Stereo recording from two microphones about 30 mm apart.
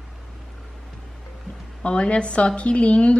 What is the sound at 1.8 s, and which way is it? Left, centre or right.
A woman's voice, left.